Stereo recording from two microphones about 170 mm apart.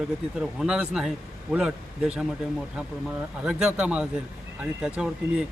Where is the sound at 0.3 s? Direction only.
5° right (ahead or behind).